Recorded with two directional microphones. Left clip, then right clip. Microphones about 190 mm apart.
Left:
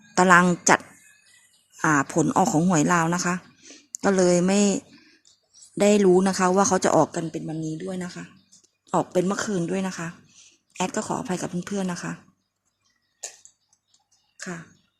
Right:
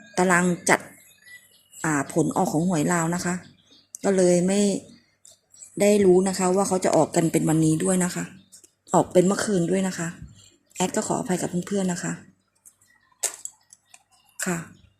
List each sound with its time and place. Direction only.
0.1 s a woman's voice: 20° left (ahead or behind)
1.8 s a woman's voice: 20° left (ahead or behind)
7.3 s speech: 20° right (ahead or behind)
8.9 s speech: 5° left (ahead or behind)
14.3 s speech: 10° right (ahead or behind)